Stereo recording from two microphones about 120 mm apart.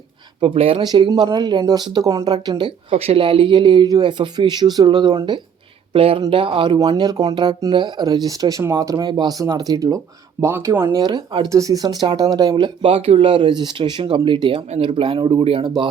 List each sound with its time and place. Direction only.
0.4 s speech: 55° right (ahead or behind)
0.8 s speech: 40° right (ahead or behind)
6.7 s speech: 35° right (ahead or behind)